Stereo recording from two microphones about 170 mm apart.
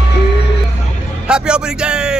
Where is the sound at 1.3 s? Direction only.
5° right (ahead or behind).